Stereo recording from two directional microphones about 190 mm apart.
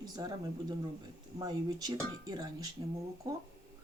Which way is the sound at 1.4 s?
20° right (ahead or behind).